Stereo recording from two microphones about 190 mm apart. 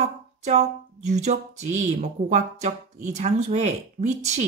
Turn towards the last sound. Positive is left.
turn(degrees=-35)  # may be behind; listen again after turning